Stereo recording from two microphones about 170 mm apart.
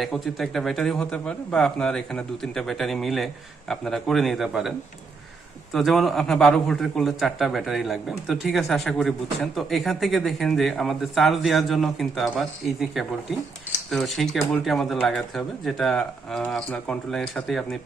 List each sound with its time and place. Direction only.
0.0 s a man's voice: centre (ahead or behind)